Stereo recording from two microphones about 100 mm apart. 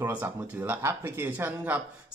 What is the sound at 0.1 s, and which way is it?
Speech, 20° right (ahead or behind).